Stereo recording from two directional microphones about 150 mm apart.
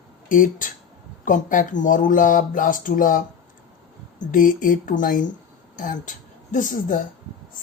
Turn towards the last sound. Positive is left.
turn(degrees=60)  # may be behind; listen again after turning